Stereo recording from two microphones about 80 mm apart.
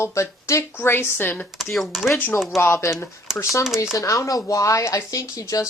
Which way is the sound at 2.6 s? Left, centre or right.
Left.